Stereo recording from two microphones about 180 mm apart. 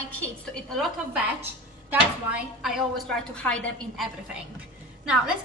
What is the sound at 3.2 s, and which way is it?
A woman's voice, 5° left (ahead or behind).